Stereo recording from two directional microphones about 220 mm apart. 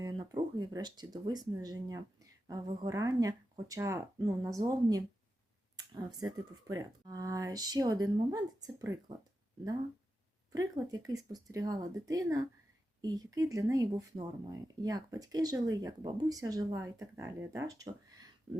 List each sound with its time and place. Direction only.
0.0 s speech: 15° right (ahead or behind)
10.5 s speech: 15° right (ahead or behind)